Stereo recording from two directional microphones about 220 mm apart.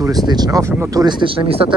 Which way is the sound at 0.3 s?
15° right (ahead or behind).